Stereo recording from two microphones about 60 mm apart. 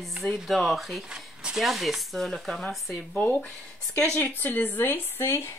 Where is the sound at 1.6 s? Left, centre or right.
Centre.